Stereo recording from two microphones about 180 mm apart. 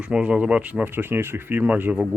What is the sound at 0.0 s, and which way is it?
Speech, 5° right (ahead or behind).